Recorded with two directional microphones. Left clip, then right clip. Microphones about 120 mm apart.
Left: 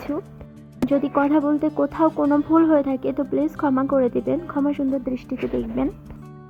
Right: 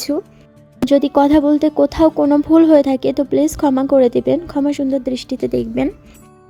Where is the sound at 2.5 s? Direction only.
50° right (ahead or behind).